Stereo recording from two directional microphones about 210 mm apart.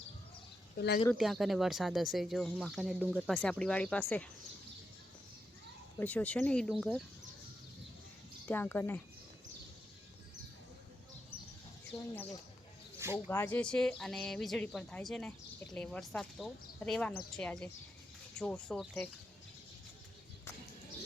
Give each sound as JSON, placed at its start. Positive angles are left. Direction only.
{"t": 0.8, "sound": "speech", "side_deg": 50}
{"t": 1.2, "sound": "speech", "side_deg": 0}
{"t": 6.0, "sound": "speech", "side_deg": 5}
{"t": 8.4, "sound": "speech", "side_deg": 10}
{"t": 12.1, "sound": "speech", "side_deg": 10}